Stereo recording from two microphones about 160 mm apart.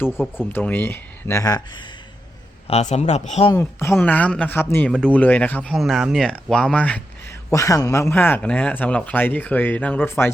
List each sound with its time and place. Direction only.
0.3 s speech: 10° left (ahead or behind)
2.6 s a man's voice: 45° left (ahead or behind)
3.5 s speech: 15° left (ahead or behind)
5.7 s speech: centre (ahead or behind)
7.5 s speech: 20° left (ahead or behind)